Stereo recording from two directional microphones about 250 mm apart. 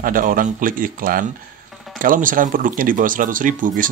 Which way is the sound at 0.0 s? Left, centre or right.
Right.